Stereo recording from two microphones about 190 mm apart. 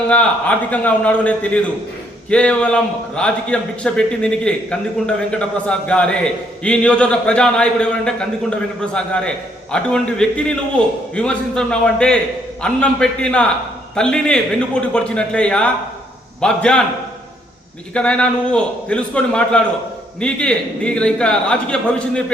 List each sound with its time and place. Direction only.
0.1 s a man's voice: 5° left (ahead or behind)
17.9 s a man's voice: 5° left (ahead or behind)